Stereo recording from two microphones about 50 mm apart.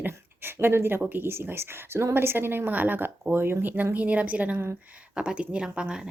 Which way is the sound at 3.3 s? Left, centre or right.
Right.